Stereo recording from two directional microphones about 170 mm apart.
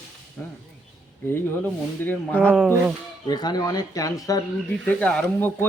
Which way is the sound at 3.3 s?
25° left (ahead or behind).